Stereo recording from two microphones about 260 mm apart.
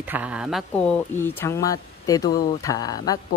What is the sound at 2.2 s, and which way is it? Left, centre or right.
Speech, left.